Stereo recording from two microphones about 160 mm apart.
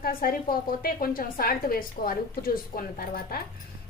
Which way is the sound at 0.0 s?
65° left (ahead or behind).